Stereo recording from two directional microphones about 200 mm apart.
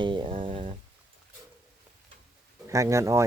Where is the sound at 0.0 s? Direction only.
25° right (ahead or behind).